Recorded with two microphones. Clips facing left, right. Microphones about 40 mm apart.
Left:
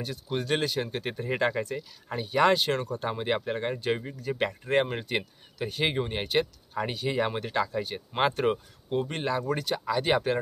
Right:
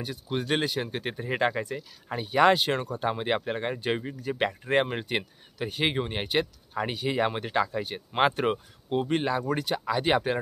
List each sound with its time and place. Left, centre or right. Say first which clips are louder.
0.0 s speech: even; centre